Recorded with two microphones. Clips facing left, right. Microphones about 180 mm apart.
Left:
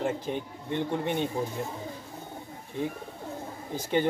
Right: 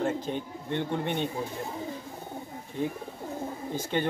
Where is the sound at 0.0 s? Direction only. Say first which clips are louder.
Right 1 dB; 10° left (ahead or behind).